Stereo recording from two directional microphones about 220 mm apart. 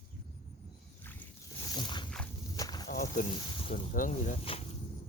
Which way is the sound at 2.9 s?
40° left (ahead or behind).